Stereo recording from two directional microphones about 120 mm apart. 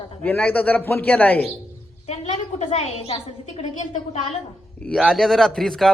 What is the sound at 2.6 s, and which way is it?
A woman's voice, 65° left (ahead or behind).